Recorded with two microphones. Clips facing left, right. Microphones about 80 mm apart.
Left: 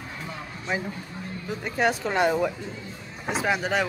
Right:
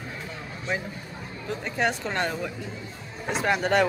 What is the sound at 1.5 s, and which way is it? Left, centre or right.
Speech, centre.